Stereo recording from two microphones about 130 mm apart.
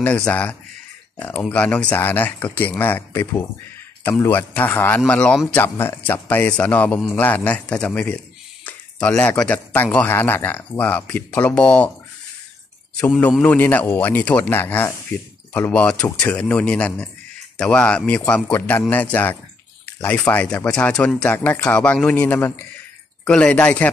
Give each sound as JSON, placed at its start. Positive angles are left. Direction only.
{"t": 0.0, "sound": "a man's voice", "side_deg": 10}
{"t": 5.6, "sound": "a man's voice", "side_deg": 15}
{"t": 13.4, "sound": "a man's voice", "side_deg": 15}